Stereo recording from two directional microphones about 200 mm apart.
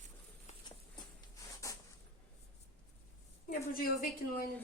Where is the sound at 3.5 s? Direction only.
45° left (ahead or behind).